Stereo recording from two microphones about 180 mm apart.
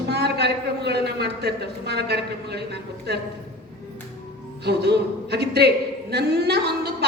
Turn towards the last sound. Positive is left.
turn(degrees=-65)  # may be behind; listen again after turning